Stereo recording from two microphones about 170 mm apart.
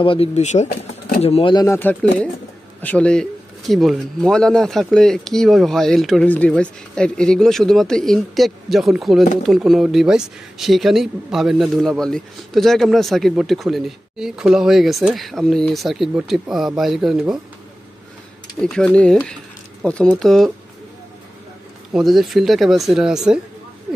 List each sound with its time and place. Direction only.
0.0 s speech: 35° left (ahead or behind)
0.7 s a sound: 65° left (ahead or behind)
1.2 s speech: 35° left (ahead or behind)
1.5 s speech: 20° left (ahead or behind)
1.8 s speech: 10° left (ahead or behind)
18.6 s speech: 5° left (ahead or behind)
21.9 s speech: centre (ahead or behind)